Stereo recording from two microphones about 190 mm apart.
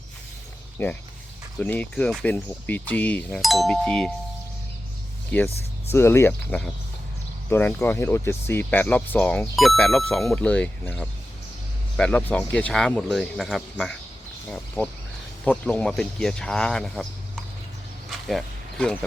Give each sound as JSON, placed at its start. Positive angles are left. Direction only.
{"t": 0.8, "sound": "speech", "side_deg": 10}
{"t": 5.9, "sound": "speech", "side_deg": 15}
{"t": 18.1, "sound": "a sound", "side_deg": 0}